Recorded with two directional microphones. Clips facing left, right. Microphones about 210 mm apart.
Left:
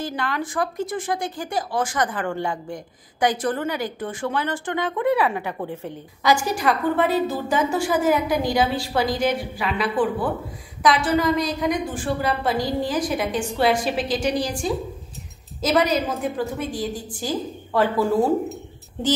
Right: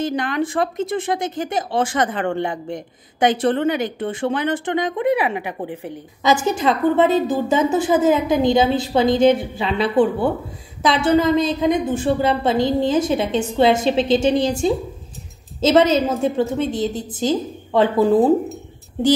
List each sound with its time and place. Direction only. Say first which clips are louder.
0.0 s speech: right 6 dB; 20° right (ahead or behind)